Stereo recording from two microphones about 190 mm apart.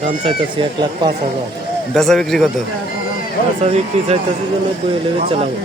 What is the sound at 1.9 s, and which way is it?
Speech, centre (ahead or behind).